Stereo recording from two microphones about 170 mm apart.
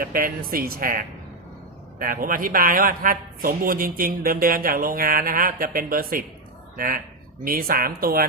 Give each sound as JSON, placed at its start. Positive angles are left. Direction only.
{"t": 0.0, "sound": "a man's voice", "side_deg": -60}